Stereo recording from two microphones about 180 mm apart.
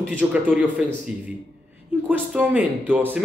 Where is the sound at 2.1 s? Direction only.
10° right (ahead or behind).